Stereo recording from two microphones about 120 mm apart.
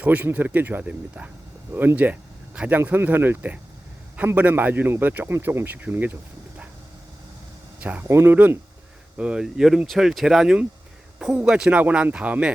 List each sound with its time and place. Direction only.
0.0 s speech: 15° right (ahead or behind)
7.8 s speech: 15° right (ahead or behind)